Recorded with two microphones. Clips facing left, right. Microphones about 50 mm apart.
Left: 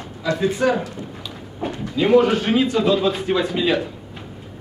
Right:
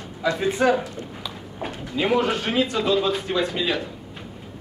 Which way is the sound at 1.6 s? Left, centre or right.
Centre.